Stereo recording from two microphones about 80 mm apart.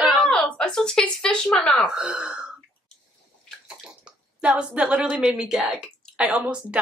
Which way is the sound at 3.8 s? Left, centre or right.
Centre.